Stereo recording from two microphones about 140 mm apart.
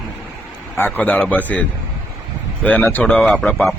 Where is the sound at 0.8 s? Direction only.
15° left (ahead or behind).